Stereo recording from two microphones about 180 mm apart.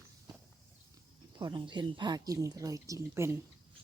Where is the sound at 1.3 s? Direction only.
25° right (ahead or behind).